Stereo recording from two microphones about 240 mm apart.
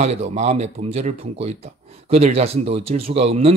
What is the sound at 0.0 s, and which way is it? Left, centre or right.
A man's voice, right.